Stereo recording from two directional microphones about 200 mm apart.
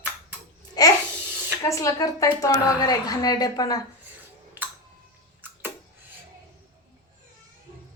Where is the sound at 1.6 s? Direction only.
15° left (ahead or behind).